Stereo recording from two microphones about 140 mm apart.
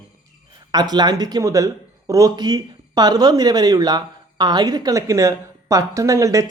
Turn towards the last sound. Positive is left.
turn(degrees=-20)  # may be behind; listen again after turning